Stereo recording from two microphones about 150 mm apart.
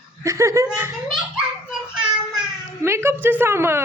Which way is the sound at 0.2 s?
20° right (ahead or behind).